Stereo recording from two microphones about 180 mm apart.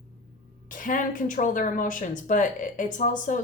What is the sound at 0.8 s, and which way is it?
Speech, 45° left (ahead or behind).